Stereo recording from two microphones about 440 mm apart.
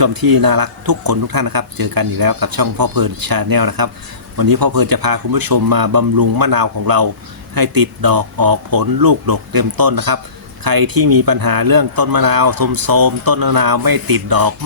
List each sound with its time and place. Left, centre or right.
0.0 s speech: right